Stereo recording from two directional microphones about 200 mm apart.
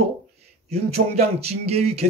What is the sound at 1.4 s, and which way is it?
Speech, 30° right (ahead or behind).